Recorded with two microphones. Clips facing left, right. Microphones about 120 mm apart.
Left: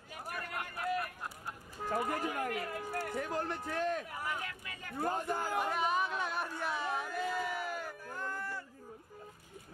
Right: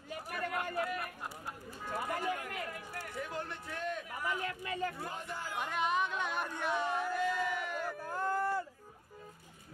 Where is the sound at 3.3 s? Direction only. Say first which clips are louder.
Left 5 dB; 40° left (ahead or behind).